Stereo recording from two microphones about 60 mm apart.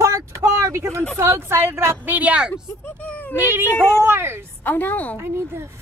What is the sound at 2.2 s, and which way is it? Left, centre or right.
Speech, right.